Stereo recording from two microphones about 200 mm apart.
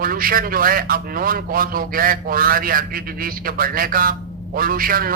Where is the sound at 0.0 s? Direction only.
45° right (ahead or behind).